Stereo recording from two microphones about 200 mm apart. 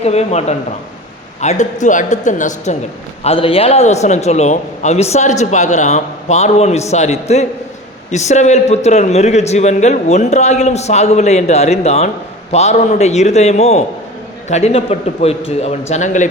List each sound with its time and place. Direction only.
0.0 s a man's voice: 30° left (ahead or behind)
3.2 s a man's voice: 30° left (ahead or behind)